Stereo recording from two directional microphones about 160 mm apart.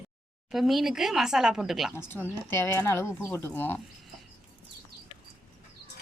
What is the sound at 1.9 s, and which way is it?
Speech, 15° left (ahead or behind).